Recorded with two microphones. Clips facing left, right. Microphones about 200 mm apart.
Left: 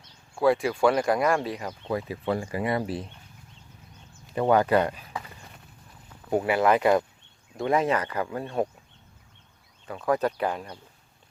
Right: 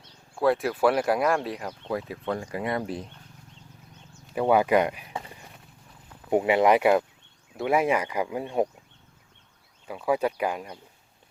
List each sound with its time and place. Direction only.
0.3 s speech: centre (ahead or behind)
4.4 s speech: 10° right (ahead or behind)
6.3 s speech: 20° right (ahead or behind)
9.8 s speech: 10° right (ahead or behind)